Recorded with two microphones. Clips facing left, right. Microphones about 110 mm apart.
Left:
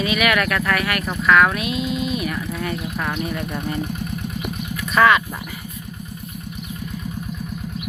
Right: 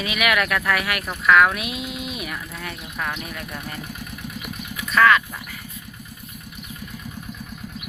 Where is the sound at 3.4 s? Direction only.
20° left (ahead or behind).